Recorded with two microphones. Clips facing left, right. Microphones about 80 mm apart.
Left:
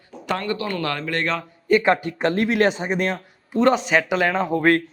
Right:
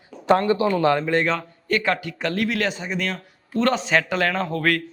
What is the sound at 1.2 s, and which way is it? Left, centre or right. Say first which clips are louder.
Speech: right 1 dB; centre.